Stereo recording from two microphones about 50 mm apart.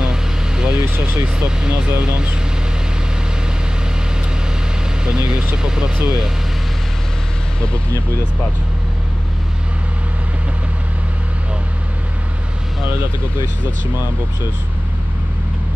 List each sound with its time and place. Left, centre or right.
0.0 s vehicle: centre
1.0 s speech: centre
5.0 s speech: centre